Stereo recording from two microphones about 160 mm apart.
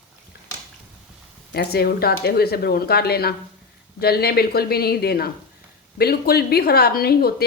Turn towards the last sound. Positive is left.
turn(degrees=75)  # may be behind; listen again after turning